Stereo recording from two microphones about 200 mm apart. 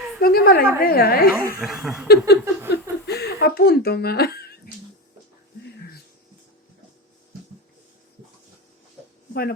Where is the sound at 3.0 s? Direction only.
55° left (ahead or behind).